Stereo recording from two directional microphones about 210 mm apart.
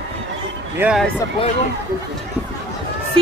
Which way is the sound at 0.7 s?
5° right (ahead or behind).